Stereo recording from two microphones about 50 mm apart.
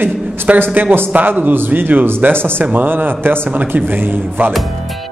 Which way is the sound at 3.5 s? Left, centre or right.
Right.